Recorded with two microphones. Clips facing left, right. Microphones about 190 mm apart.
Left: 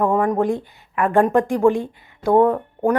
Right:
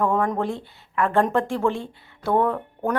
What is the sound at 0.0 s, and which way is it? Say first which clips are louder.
Speech: left 4 dB; 15° left (ahead or behind).